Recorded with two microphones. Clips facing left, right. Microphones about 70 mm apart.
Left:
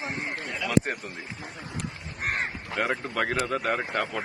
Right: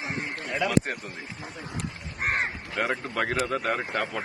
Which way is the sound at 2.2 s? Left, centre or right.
Right.